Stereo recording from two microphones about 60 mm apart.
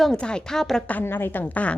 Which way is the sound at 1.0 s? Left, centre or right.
Left.